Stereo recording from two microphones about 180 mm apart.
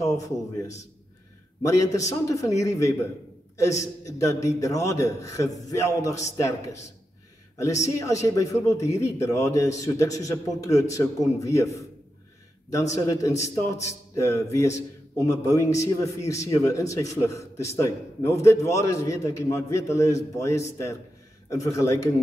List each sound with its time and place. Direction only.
1.6 s a man's voice: 15° left (ahead or behind)
12.9 s a man's voice: 20° left (ahead or behind)